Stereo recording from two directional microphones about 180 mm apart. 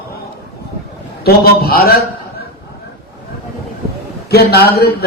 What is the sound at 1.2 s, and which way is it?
Speech, 55° left (ahead or behind).